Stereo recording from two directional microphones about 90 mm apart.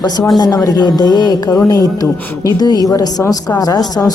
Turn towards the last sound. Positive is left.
turn(degrees=45)  # may be behind; listen again after turning